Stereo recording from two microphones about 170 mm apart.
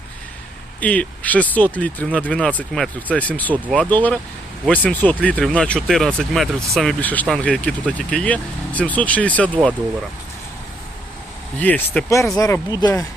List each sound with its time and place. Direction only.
0.8 s speech: 10° left (ahead or behind)
11.6 s speech: 10° left (ahead or behind)